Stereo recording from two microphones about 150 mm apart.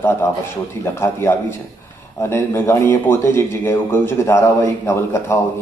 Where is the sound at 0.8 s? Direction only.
15° left (ahead or behind).